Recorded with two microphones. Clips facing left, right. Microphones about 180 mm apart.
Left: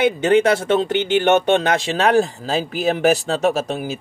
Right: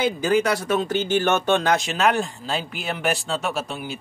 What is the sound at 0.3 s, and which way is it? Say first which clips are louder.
Speech: left 5 dB; 25° left (ahead or behind).